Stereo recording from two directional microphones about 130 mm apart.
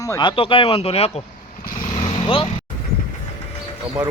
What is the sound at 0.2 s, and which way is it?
Speech, 40° left (ahead or behind).